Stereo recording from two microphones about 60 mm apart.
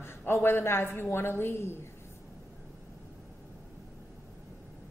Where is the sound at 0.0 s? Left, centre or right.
Left.